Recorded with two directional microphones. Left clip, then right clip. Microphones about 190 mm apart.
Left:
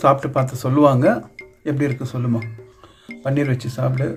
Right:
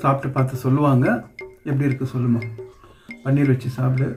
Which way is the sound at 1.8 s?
50° left (ahead or behind).